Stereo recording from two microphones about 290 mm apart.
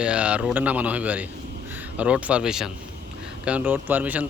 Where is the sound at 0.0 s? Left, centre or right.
Centre.